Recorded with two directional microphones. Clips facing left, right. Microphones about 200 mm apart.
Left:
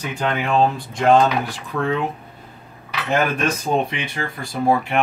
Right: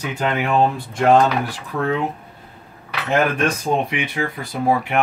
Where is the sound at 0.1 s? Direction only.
10° right (ahead or behind).